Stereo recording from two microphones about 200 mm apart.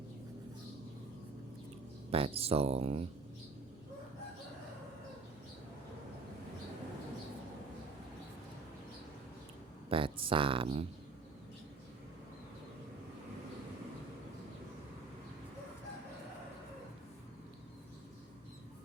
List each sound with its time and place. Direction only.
2.0 s speech: 30° right (ahead or behind)
9.9 s speech: 25° right (ahead or behind)